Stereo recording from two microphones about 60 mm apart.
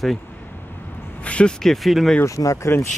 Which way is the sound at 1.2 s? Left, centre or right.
Left.